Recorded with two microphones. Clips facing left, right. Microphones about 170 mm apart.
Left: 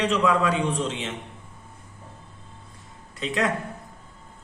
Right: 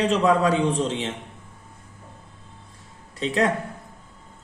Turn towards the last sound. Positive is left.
turn(degrees=-30)  # may be behind; listen again after turning